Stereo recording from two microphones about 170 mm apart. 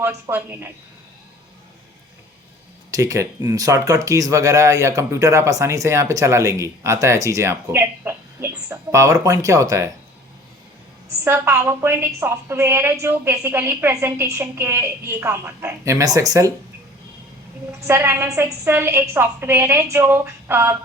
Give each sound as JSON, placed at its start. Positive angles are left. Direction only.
{"t": 0.0, "sound": "a woman's voice", "side_deg": -15}
{"t": 2.9, "sound": "speech", "side_deg": -20}
{"t": 11.2, "sound": "a woman's voice", "side_deg": -15}
{"t": 17.8, "sound": "a woman's voice", "side_deg": -15}